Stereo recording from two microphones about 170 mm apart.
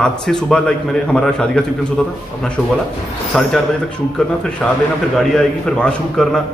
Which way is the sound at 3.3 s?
5° left (ahead or behind).